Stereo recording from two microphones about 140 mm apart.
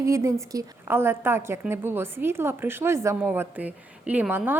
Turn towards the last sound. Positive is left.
turn(degrees=-5)  # may be behind; listen again after turning